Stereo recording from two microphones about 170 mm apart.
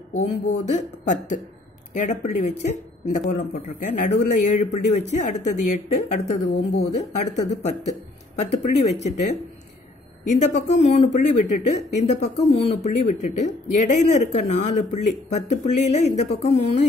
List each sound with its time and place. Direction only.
0.1 s speech: 40° left (ahead or behind)